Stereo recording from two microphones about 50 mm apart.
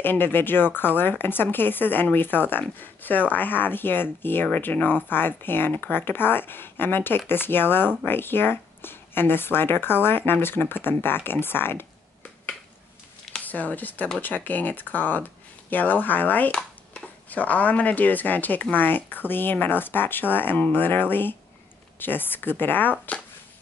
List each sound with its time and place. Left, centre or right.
0.0 s speech: left
13.4 s speech: left